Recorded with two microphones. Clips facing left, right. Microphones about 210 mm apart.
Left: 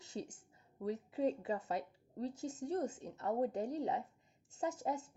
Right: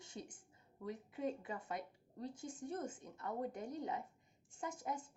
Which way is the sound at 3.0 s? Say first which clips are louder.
Left 7 dB; 80° left.